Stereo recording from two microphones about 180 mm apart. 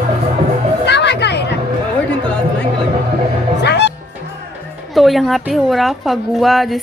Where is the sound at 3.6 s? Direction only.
70° left (ahead or behind).